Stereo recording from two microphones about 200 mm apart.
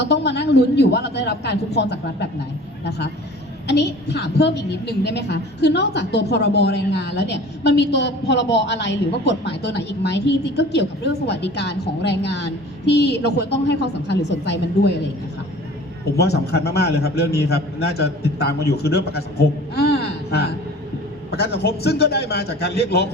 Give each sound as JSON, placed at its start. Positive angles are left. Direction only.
{"t": 0.0, "sound": "a woman's voice", "side_deg": 60}
{"t": 3.7, "sound": "a woman's voice", "side_deg": 55}
{"t": 16.1, "sound": "a woman's voice", "side_deg": 55}